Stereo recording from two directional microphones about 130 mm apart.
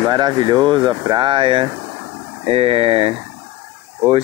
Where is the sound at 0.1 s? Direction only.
35° right (ahead or behind).